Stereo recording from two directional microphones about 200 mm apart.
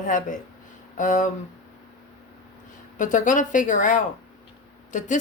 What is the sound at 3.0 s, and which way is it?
Speech, 40° left (ahead or behind).